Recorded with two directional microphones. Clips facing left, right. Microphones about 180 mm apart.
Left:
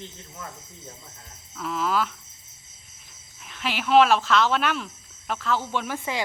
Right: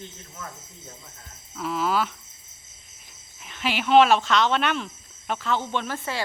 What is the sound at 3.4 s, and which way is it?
Speech, centre (ahead or behind).